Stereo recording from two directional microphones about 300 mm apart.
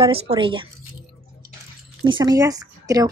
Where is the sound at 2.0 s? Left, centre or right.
Centre.